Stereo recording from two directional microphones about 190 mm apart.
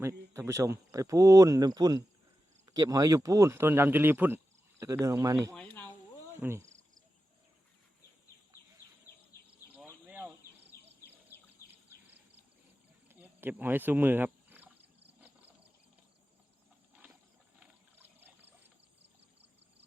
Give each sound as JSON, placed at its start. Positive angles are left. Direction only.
{"t": 0.0, "sound": "speech", "side_deg": -15}
{"t": 5.5, "sound": "a sound", "side_deg": 10}
{"t": 6.4, "sound": "speech", "side_deg": -15}
{"t": 10.0, "sound": "insect", "side_deg": -10}
{"t": 10.7, "sound": "insect", "side_deg": 15}
{"t": 13.1, "sound": "cricket", "side_deg": -10}
{"t": 15.2, "sound": "wild animals", "side_deg": -10}
{"t": 17.6, "sound": "pour", "side_deg": -10}